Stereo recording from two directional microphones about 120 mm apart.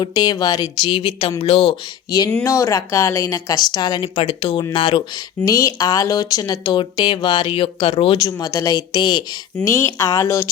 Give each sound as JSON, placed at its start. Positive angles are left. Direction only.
{"t": 0.0, "sound": "a woman's voice", "side_deg": 35}
{"t": 2.0, "sound": "a woman's voice", "side_deg": 35}
{"t": 5.5, "sound": "a woman's voice", "side_deg": 30}
{"t": 7.4, "sound": "speech", "side_deg": 50}
{"t": 8.2, "sound": "a woman's voice", "side_deg": 30}
{"t": 9.6, "sound": "speech", "side_deg": 25}